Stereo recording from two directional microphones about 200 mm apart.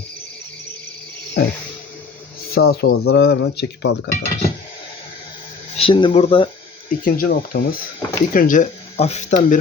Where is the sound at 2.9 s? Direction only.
90° left.